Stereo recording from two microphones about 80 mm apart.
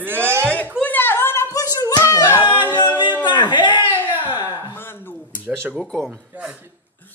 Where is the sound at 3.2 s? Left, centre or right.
Left.